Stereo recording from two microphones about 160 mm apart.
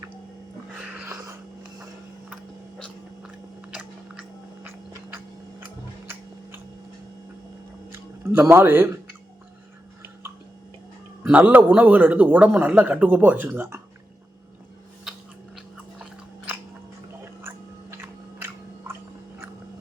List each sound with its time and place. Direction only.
0.7 s wheeze: 10° right (ahead or behind)
3.8 s biting: 10° right (ahead or behind)
5.1 s tick-tock: 15° right (ahead or behind)
7.9 s speech: 15° right (ahead or behind)
11.2 s speech: 10° right (ahead or behind)
17.9 s chewing: 15° right (ahead or behind)